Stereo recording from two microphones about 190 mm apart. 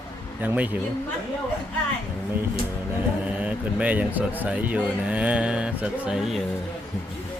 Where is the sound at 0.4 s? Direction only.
10° right (ahead or behind).